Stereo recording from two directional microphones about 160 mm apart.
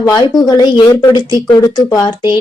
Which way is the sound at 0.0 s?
20° left (ahead or behind).